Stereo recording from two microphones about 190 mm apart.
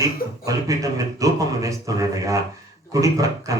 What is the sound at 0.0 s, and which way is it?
Speech, 15° right (ahead or behind).